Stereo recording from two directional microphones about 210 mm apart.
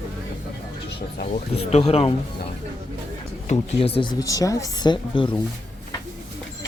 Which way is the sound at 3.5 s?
25° left (ahead or behind).